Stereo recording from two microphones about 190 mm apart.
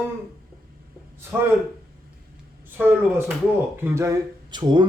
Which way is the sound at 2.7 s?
10° right (ahead or behind).